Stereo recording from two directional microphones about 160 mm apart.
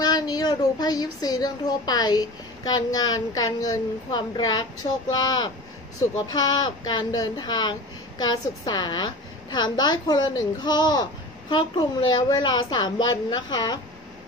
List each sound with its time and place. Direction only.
0.0 s a woman's voice: 25° left (ahead or behind)
6.1 s a woman's voice: 25° left (ahead or behind)